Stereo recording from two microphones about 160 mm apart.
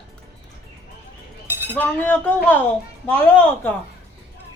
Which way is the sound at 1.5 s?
15° right (ahead or behind).